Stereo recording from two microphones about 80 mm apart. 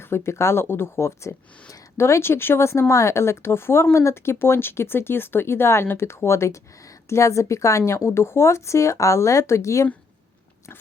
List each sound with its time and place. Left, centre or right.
0.0 s speech: left